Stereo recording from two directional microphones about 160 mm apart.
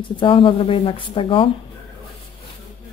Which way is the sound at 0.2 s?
35° left (ahead or behind).